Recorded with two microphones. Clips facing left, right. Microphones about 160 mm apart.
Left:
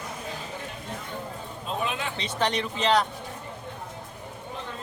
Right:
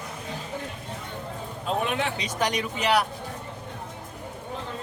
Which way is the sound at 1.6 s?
65° right (ahead or behind).